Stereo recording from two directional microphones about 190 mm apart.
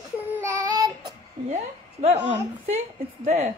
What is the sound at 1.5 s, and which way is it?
A woman's voice, 35° right (ahead or behind).